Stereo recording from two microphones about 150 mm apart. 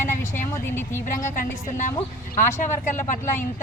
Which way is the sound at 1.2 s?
60° left (ahead or behind).